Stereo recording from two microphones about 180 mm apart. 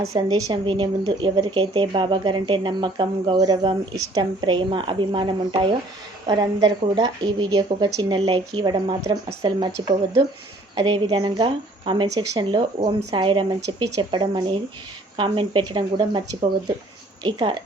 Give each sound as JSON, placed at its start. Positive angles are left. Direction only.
{"t": 0.1, "sound": "speech", "side_deg": -20}
{"t": 10.8, "sound": "speech", "side_deg": -25}